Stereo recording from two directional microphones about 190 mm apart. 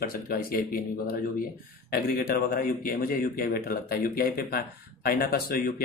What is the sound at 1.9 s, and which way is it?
Speech, 50° left (ahead or behind).